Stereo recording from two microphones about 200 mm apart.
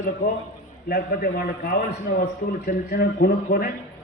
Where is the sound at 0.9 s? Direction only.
50° left (ahead or behind).